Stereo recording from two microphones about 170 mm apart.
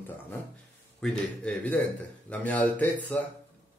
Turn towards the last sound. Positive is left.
turn(degrees=10)  # may be behind; listen again after turning